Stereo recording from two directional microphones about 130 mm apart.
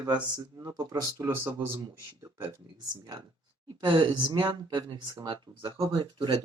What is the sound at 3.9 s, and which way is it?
Speech, 40° right (ahead or behind).